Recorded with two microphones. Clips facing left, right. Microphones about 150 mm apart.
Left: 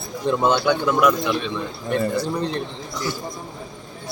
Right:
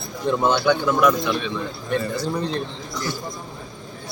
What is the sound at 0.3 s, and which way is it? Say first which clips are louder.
Speech: even; 15° left (ahead or behind).